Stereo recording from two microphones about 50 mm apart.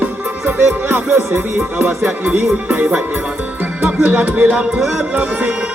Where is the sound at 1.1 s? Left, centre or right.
Right.